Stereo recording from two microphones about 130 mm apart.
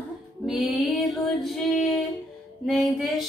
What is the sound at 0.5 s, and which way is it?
Female singing, centre (ahead or behind).